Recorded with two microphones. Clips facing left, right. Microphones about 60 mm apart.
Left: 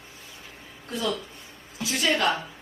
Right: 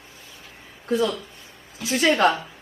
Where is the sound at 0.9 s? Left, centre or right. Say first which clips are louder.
Right 6 dB; right.